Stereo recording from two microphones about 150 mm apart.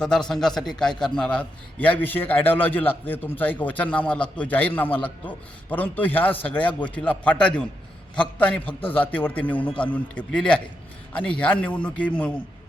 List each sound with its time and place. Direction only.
0.0 s a man's voice: 5° left (ahead or behind)